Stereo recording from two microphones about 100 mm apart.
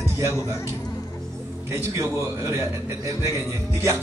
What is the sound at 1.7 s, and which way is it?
Speech, 30° right (ahead or behind).